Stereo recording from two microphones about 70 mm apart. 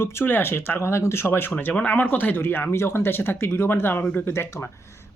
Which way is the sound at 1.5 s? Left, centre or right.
Left.